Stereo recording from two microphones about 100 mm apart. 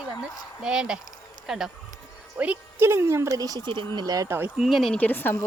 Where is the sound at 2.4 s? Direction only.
20° right (ahead or behind); by 4.3 s 35° right (ahead or behind).